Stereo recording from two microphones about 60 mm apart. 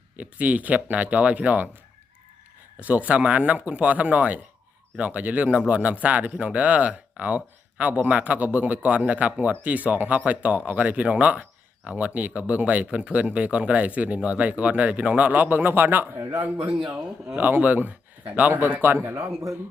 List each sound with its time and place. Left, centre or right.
0.2 s a man's voice: right
2.8 s a man's voice: right
16.7 s speech: centre
17.3 s speech: right